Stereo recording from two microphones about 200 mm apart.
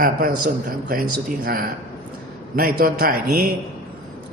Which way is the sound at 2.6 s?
45° right (ahead or behind).